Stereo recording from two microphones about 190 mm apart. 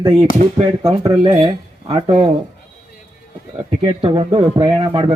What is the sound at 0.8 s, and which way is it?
Speech, 30° right (ahead or behind).